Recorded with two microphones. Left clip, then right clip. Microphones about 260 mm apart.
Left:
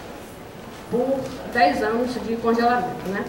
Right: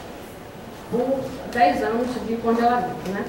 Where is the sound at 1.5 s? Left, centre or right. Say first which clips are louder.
Even; centre.